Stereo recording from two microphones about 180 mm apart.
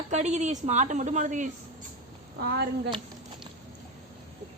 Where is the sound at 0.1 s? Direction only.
40° right (ahead or behind).